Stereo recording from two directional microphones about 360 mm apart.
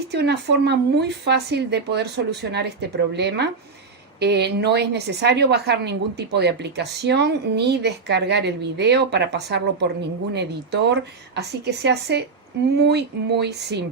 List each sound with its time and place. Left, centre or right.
0.1 s a woman's voice: right